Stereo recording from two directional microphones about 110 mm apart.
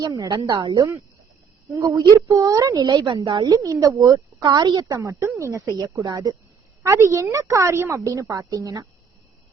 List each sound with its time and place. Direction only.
0.0 s speech: 30° right (ahead or behind)
1.7 s a woman's voice: 30° right (ahead or behind)